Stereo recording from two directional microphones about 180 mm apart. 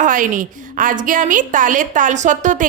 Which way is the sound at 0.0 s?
45° right (ahead or behind).